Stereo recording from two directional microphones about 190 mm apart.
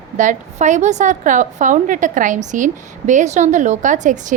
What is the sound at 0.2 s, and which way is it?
A woman's voice, 40° right (ahead or behind).